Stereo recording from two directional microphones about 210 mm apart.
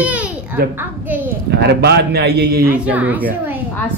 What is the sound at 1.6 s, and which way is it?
Speech, 50° right (ahead or behind).